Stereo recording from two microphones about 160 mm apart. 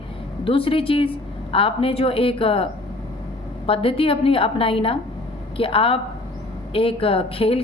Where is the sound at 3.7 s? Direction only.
35° left (ahead or behind).